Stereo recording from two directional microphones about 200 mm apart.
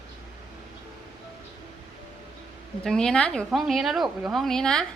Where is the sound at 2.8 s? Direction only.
5° left (ahead or behind).